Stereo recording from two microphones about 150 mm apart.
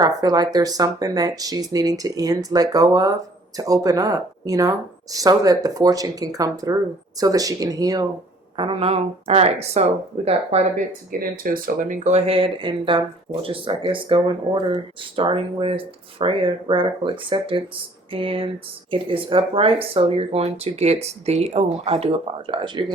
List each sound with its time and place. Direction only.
0.0 s speech: 25° right (ahead or behind)
8.5 s speech: 35° right (ahead or behind)
11.2 s speech: 70° right (ahead or behind); by 22.9 s 30° right (ahead or behind)